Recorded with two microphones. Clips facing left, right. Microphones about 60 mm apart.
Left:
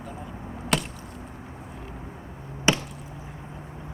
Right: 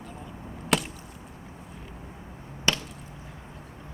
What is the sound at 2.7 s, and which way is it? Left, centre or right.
Chop, centre.